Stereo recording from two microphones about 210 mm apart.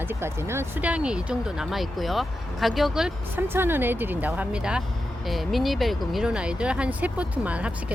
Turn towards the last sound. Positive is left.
turn(degrees=-5)  # may be behind; listen again after turning